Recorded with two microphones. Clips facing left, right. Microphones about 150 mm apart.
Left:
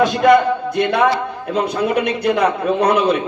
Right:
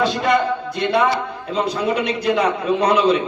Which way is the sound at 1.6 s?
55° left (ahead or behind).